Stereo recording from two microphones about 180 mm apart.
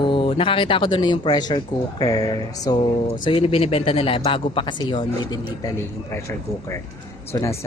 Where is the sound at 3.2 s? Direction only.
30° left (ahead or behind).